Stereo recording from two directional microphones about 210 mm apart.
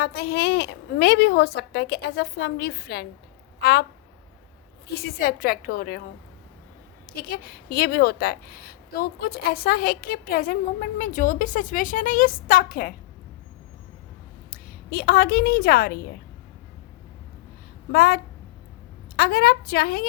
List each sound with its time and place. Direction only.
0.0 s a woman's voice: 50° left (ahead or behind)
4.9 s a woman's voice: 45° left (ahead or behind)
7.2 s a woman's voice: 45° left (ahead or behind)
14.5 s a woman's voice: 45° left (ahead or behind)
17.9 s a woman's voice: 50° left (ahead or behind)